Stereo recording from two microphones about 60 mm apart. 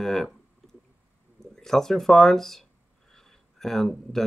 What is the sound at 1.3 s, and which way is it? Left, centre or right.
Speech, centre.